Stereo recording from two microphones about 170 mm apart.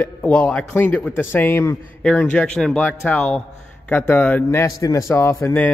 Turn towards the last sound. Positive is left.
turn(degrees=15)  # may be behind; listen again after turning